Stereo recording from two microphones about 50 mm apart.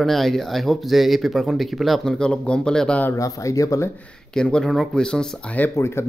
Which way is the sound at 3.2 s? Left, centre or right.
Left.